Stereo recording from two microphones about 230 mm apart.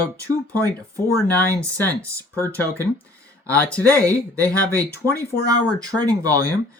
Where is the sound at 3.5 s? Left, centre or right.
Centre.